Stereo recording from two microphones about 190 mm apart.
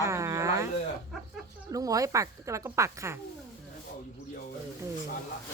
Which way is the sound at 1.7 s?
20° right (ahead or behind).